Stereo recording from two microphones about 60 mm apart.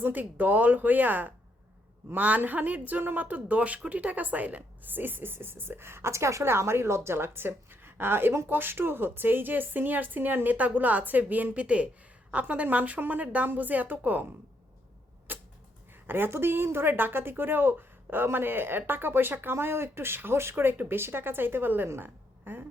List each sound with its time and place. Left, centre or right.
0.0 s speech: right
15.3 s arrow: right
16.0 s a woman's voice: right